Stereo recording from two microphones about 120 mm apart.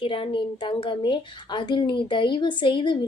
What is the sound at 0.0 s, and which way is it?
A woman's voice, 45° left (ahead or behind).